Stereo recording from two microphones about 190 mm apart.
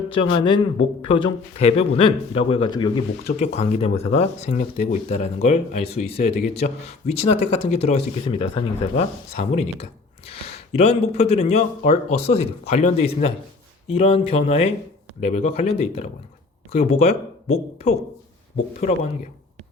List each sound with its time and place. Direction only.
0.1 s speech: 25° left (ahead or behind)
3.3 s speech: 35° left (ahead or behind)